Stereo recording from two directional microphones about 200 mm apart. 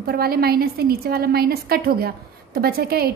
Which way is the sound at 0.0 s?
50° right (ahead or behind).